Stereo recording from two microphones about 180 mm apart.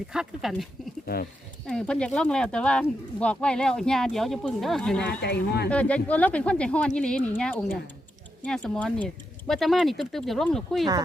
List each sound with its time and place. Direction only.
0.1 s speech: centre (ahead or behind)
1.0 s speech: 60° left (ahead or behind)
1.6 s speech: 5° left (ahead or behind)
5.2 s speech: 65° left (ahead or behind)
5.6 s speech: 5° left (ahead or behind)